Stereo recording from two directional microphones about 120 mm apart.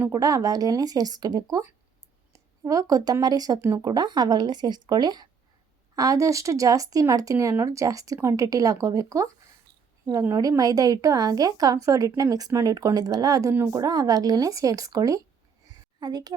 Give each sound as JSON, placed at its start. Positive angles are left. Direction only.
{"t": 0.1, "sound": "a woman's voice", "side_deg": -30}
{"t": 3.6, "sound": "speech", "side_deg": -20}
{"t": 3.8, "sound": "a woman's voice", "side_deg": -35}
{"t": 13.5, "sound": "speech", "side_deg": -20}
{"t": 13.7, "sound": "a child's voice", "side_deg": -30}